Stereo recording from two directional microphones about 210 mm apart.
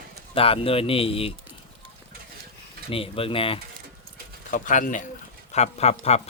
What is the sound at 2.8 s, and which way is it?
Speech, 25° left (ahead or behind).